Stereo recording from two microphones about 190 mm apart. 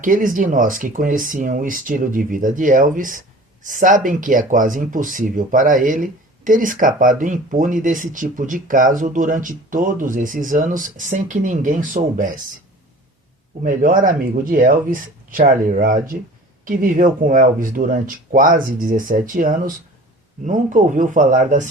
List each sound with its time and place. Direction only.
0.0 s speech: 45° right (ahead or behind)
13.7 s speech: 45° right (ahead or behind)